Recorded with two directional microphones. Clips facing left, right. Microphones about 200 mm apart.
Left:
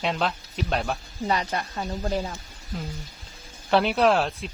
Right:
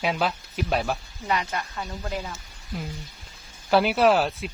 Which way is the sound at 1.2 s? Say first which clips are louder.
Left 2 dB; 35° left (ahead or behind).